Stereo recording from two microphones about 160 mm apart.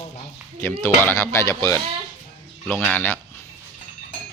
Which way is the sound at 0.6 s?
15° left (ahead or behind).